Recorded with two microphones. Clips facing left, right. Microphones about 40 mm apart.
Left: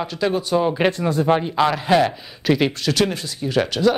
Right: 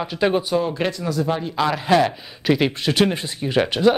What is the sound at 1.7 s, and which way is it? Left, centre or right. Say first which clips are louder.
Speech: even; centre.